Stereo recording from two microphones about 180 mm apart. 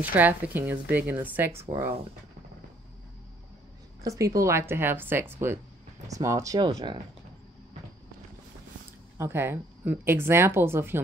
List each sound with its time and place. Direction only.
0.1 s speech: 10° right (ahead or behind)
4.0 s speech: 20° right (ahead or behind)
9.2 s speech: 10° right (ahead or behind)